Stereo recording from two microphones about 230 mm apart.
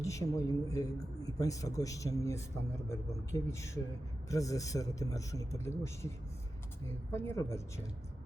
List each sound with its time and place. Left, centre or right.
0.0 s a man's voice: centre